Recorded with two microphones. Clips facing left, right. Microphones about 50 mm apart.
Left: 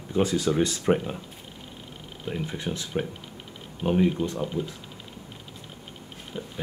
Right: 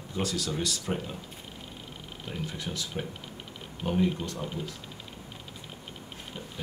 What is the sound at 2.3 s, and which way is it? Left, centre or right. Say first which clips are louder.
Speech: left 6 dB; left.